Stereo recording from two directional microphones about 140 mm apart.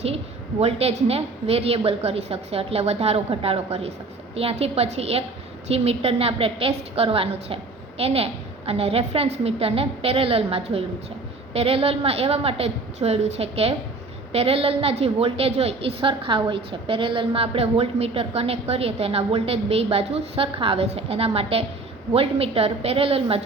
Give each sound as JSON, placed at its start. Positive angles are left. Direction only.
{"t": 0.6, "sound": "a woman's voice", "side_deg": -45}